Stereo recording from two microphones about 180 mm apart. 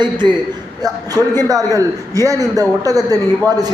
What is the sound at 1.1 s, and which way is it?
A man's voice, 20° right (ahead or behind).